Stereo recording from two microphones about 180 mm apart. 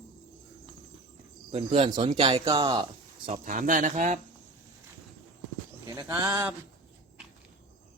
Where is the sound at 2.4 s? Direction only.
20° right (ahead or behind).